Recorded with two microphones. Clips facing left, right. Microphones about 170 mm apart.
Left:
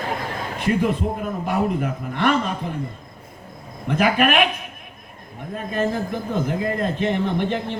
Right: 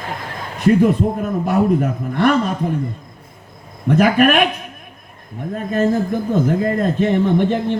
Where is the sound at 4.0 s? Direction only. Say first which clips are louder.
Right 5 dB; 45° right (ahead or behind).